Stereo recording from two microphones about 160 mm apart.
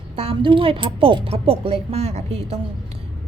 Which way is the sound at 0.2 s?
35° right (ahead or behind).